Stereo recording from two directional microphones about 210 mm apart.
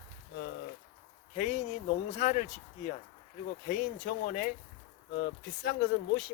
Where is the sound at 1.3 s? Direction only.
35° left (ahead or behind).